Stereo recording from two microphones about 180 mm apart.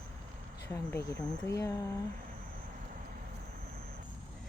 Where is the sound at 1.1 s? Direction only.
15° left (ahead or behind).